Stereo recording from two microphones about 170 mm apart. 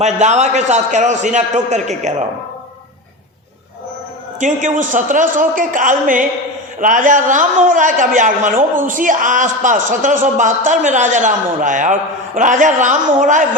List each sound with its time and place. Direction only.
0.0 s a man's voice: 45° right (ahead or behind)
4.4 s a man's voice: 50° right (ahead or behind)